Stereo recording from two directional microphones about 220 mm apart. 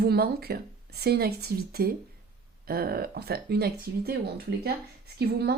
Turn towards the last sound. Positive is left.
turn(degrees=-50)  # may be behind; listen again after turning